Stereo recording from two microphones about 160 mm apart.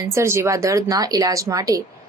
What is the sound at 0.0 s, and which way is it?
Speech, 20° right (ahead or behind).